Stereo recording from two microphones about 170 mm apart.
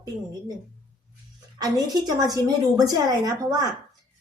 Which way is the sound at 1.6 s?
20° right (ahead or behind).